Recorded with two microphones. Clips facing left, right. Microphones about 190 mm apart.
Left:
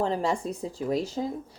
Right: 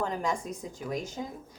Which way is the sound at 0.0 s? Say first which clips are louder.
Left 5 dB; 30° left (ahead or behind).